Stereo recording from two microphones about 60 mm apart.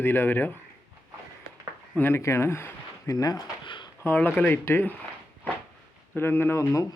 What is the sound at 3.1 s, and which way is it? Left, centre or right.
Speech, left.